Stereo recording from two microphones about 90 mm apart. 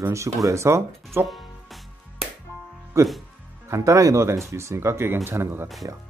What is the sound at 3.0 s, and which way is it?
Speech, 30° right (ahead or behind).